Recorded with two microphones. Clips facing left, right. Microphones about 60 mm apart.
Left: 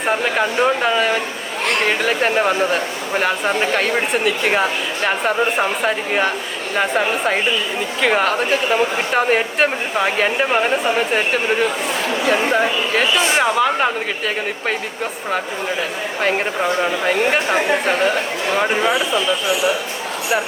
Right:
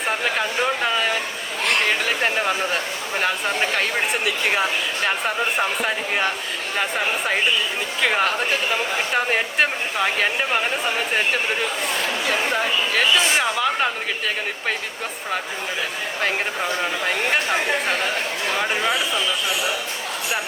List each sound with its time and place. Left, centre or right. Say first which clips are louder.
0.6 s speech: left 5 dB; centre
5.0 s speech: left 6 dB; centre
8.0 s speech: left 4 dB; centre
10.5 s a woman's voice: left 6 dB; centre
12.5 s speech: left 4 dB; centre
16.8 s speech: left 5 dB; centre
17.5 s a woman's voice: left 4 dB; left